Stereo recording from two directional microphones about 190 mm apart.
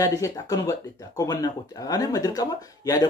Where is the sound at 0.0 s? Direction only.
20° left (ahead or behind).